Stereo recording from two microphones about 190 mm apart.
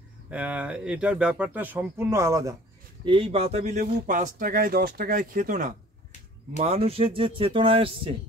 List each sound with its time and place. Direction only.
0.3 s speech: 5° right (ahead or behind)
3.1 s speech: 30° right (ahead or behind)
4.0 s speech: 45° right (ahead or behind)
6.6 s speech: 30° right (ahead or behind)